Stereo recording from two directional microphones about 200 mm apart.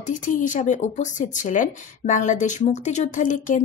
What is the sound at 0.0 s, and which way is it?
Speech, 40° left (ahead or behind).